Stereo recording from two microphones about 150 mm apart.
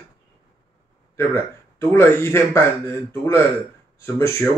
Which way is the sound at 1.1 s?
15° left (ahead or behind).